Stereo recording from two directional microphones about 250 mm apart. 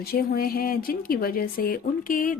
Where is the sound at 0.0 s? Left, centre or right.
Left.